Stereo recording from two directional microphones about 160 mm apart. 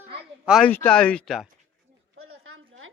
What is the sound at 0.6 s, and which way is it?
Speech, 10° left (ahead or behind).